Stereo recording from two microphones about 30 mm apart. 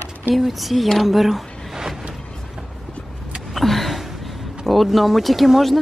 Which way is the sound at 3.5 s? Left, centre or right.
Centre.